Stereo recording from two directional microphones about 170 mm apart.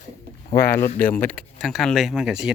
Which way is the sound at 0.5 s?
65° left (ahead or behind).